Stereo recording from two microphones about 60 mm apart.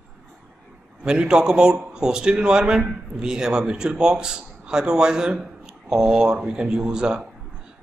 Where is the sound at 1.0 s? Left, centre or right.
Centre.